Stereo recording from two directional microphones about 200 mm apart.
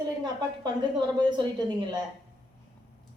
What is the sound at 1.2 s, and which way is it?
Speech, 20° right (ahead or behind).